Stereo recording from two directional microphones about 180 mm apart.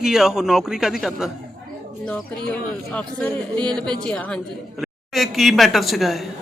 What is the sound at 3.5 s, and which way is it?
Speech, 25° right (ahead or behind).